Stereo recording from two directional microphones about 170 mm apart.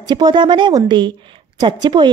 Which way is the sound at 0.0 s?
25° right (ahead or behind).